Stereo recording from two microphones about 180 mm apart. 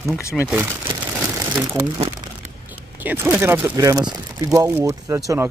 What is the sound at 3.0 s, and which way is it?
Speech, 10° right (ahead or behind).